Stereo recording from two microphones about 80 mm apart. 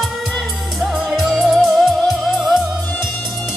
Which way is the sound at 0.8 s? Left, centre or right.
Centre.